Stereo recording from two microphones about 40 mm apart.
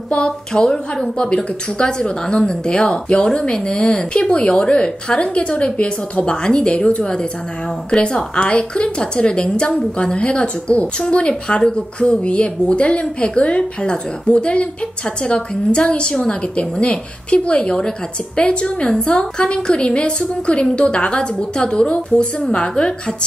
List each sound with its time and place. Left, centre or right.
0.1 s a woman's voice: left